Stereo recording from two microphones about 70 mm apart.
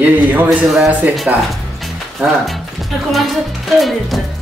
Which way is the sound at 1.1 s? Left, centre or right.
Centre.